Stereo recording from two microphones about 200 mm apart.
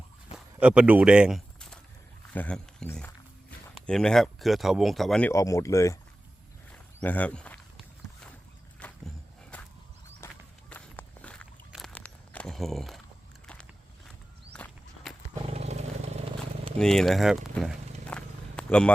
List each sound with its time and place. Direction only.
0.3 s walk: 5° right (ahead or behind)
2.3 s speech: 10° left (ahead or behind)
5.3 s speech: 15° left (ahead or behind)
6.7 s walk: 5° left (ahead or behind)
14.5 s walk: 5° left (ahead or behind)
15.4 s vehicle: 30° right (ahead or behind)
16.7 s speech: 5° left (ahead or behind)
18.1 s a sound: 5° left (ahead or behind)